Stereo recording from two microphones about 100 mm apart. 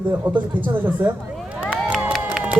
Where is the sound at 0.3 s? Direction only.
20° right (ahead or behind).